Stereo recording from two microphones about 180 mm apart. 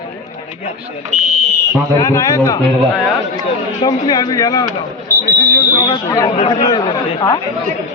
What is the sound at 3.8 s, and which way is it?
Speech, 20° left (ahead or behind).